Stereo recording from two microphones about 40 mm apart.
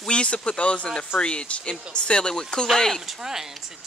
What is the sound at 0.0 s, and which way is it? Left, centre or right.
Speech, left.